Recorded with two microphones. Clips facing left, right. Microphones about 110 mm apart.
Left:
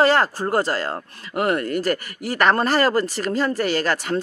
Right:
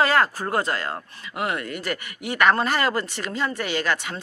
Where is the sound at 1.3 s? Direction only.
45° left (ahead or behind).